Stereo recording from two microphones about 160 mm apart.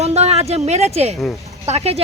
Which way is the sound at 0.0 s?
40° right (ahead or behind).